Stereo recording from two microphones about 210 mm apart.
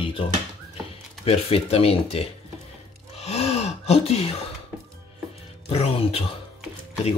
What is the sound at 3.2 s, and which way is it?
Gasp, 30° left (ahead or behind).